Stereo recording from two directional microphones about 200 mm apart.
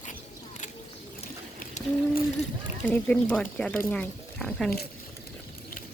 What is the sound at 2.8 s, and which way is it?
Speech, 5° left (ahead or behind).